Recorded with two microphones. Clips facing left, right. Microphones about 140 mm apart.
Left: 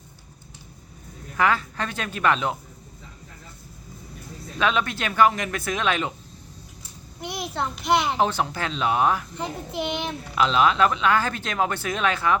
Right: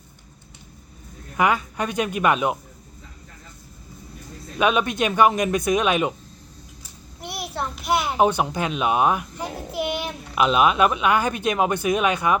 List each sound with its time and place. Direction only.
1.4 s speech: 15° right (ahead or behind)
4.5 s speech: 15° right (ahead or behind)
7.2 s a child's voice: 5° right (ahead or behind)
8.2 s speech: 15° right (ahead or behind)
9.4 s a child's voice: 5° right (ahead or behind)
10.3 s speech: 15° right (ahead or behind)